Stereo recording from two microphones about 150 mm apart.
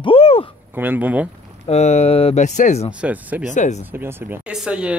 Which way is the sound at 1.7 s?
45° left (ahead or behind).